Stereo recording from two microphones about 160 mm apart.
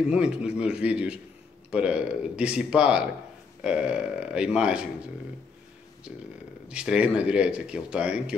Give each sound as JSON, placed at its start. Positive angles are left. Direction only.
{"t": 0.1, "sound": "speech", "side_deg": -5}
{"t": 6.7, "sound": "speech", "side_deg": -5}